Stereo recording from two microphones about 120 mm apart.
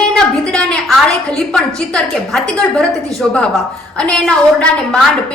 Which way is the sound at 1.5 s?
5° left (ahead or behind).